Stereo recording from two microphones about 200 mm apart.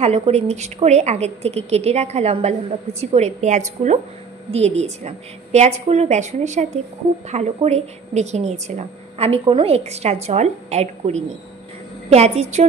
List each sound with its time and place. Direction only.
0.0 s a woman's voice: 30° right (ahead or behind)